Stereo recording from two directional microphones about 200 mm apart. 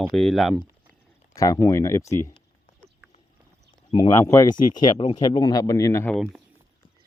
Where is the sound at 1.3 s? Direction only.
15° left (ahead or behind).